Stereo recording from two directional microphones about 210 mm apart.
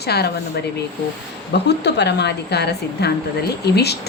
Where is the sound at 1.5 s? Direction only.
55° left (ahead or behind).